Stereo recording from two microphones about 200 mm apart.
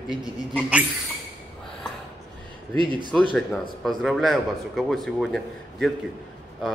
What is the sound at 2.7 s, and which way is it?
Speech, 25° right (ahead or behind).